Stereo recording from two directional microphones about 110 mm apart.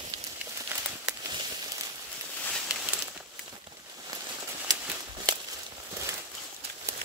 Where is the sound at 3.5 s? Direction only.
35° right (ahead or behind).